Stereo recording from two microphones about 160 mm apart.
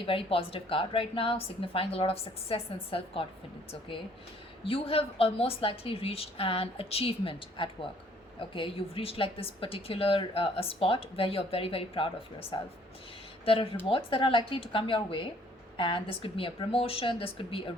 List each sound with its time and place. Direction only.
0.0 s a woman's voice: 35° left (ahead or behind)
4.6 s a woman's voice: 35° left (ahead or behind)